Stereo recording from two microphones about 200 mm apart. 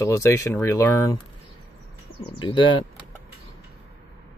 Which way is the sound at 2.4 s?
25° left (ahead or behind).